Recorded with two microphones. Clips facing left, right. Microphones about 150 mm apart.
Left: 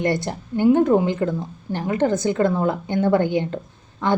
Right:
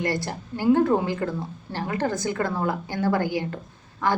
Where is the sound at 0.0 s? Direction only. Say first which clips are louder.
Left 5 dB; 20° left (ahead or behind).